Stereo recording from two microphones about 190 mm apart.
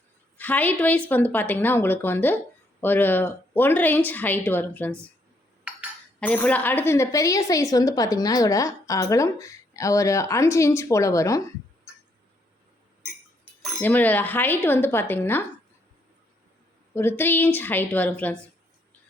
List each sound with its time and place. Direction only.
0.3 s a woman's voice: 10° left (ahead or behind)
6.1 s a woman's voice: 5° left (ahead or behind)
13.4 s speech: centre (ahead or behind)
16.9 s a woman's voice: 10° left (ahead or behind)